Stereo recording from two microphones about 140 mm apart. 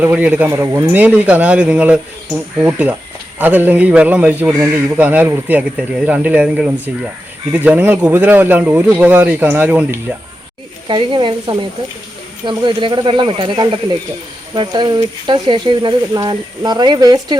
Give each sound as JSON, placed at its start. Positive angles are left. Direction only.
{"t": 0.0, "sound": "speech", "side_deg": -10}
{"t": 10.8, "sound": "speech", "side_deg": -35}